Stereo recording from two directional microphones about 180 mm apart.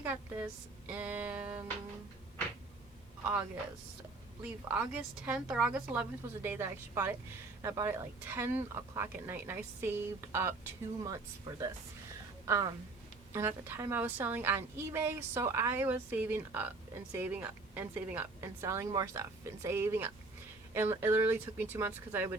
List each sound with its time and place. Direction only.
0.0 s speech: 10° right (ahead or behind)
4.4 s a woman's voice: 10° right (ahead or behind)